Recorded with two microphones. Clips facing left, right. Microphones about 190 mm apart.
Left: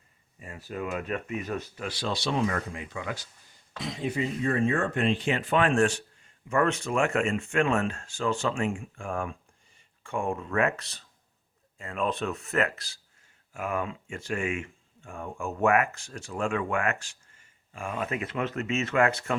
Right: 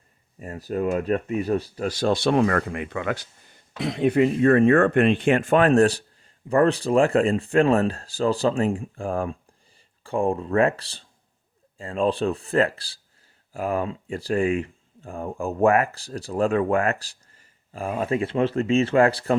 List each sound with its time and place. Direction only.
0.3 s speech: 40° right (ahead or behind)